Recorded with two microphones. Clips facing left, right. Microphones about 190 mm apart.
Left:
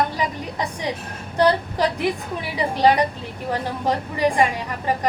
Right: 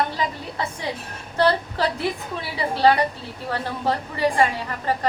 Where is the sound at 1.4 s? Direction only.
15° left (ahead or behind).